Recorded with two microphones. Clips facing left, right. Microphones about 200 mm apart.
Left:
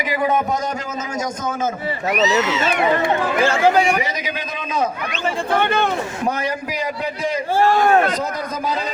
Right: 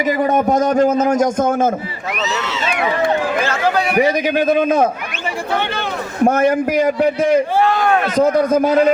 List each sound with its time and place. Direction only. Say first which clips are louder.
0.0 s a man's voice: right 4 dB; 50° right (ahead or behind)
4.0 s a man's voice: right 12 dB; 55° right (ahead or behind)
5.5 s speech: left 3 dB; 50° left (ahead or behind)
6.2 s a man's voice: right 12 dB; 50° right (ahead or behind)